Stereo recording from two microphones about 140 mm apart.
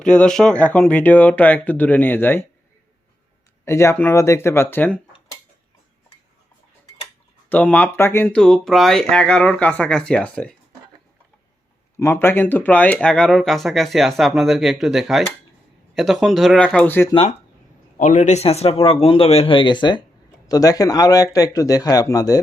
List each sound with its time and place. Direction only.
0.0 s speech: 5° left (ahead or behind)
3.7 s speech: 20° left (ahead or behind)
7.5 s speech: 10° left (ahead or behind)
11.9 s speech: 15° left (ahead or behind)
18.0 s a man's voice: 60° left (ahead or behind); by 22.4 s 25° left (ahead or behind)